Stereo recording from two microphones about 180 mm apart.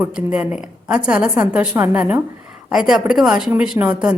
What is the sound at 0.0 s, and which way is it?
A woman's voice, 5° right (ahead or behind).